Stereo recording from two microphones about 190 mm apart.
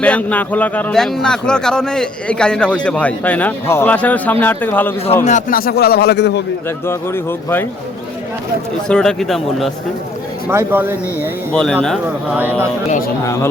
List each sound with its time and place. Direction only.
0.0 s a man's voice: 5° left (ahead or behind)
5.2 s a man's voice: 45° left (ahead or behind); by 6.4 s 65° left (ahead or behind)
6.7 s a man's voice: 15° left (ahead or behind)
8.9 s speech: 5° left (ahead or behind)
10.5 s speech: 10° right (ahead or behind)
11.5 s speech: 5° left (ahead or behind)
13.2 s a man's voice: 15° left (ahead or behind)